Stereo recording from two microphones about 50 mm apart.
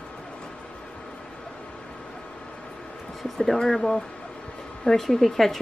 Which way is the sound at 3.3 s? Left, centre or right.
Centre.